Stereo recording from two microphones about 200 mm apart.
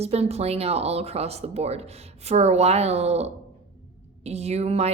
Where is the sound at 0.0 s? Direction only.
30° right (ahead or behind).